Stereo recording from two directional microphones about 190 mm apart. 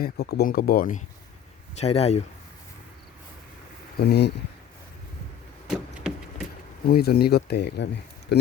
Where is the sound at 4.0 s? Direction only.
60° left (ahead or behind).